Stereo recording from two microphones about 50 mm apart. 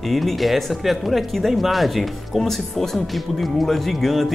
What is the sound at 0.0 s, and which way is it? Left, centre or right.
Speech, centre.